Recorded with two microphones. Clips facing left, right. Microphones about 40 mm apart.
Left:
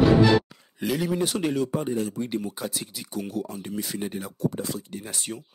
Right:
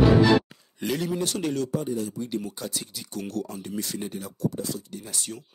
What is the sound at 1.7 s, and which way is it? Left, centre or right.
Speech, left.